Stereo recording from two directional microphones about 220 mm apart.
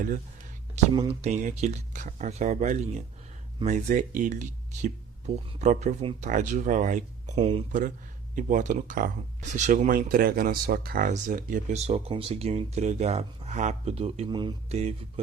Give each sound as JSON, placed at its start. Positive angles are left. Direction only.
{"t": 0.9, "sound": "speech", "side_deg": -25}